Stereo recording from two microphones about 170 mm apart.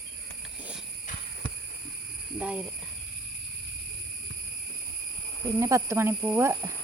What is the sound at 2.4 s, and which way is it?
Speech, 5° right (ahead or behind).